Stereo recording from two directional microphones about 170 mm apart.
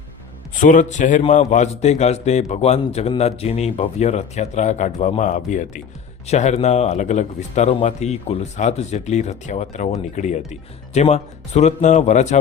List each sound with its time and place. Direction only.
0.6 s a man's voice: 50° left (ahead or behind)